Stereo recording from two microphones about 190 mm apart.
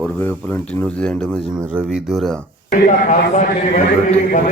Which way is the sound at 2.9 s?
40° left (ahead or behind).